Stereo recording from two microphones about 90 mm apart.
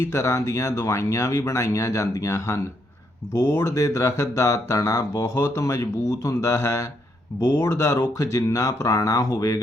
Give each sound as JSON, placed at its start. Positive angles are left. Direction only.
{"t": 0.0, "sound": "speech", "side_deg": 30}